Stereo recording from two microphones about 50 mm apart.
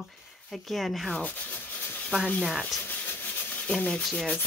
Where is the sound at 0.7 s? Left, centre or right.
Centre.